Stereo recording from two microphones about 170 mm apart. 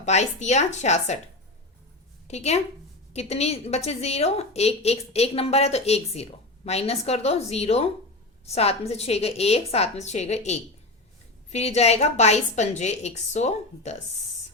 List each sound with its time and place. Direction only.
0.0 s speech: 40° left (ahead or behind)
2.2 s a woman's voice: 40° left (ahead or behind)